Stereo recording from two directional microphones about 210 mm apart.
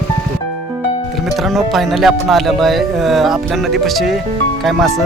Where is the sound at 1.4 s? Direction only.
Centre (ahead or behind).